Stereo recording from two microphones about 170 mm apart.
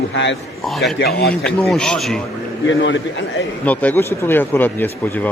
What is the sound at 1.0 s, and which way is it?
Speech, 70° left (ahead or behind).